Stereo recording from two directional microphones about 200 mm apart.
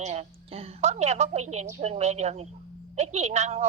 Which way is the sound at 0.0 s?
30° right (ahead or behind).